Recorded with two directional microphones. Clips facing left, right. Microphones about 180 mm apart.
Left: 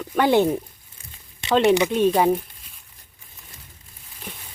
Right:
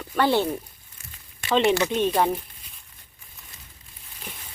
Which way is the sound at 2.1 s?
5° left (ahead or behind).